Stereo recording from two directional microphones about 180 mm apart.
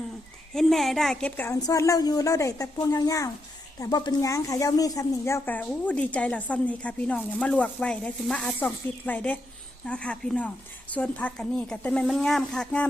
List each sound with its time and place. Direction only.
0.5 s a woman's voice: centre (ahead or behind)
1.5 s a woman's voice: 15° left (ahead or behind)